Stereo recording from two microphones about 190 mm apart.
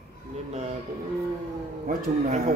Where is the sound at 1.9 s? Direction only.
50° right (ahead or behind).